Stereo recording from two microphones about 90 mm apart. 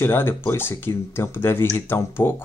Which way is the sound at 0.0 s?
25° left (ahead or behind).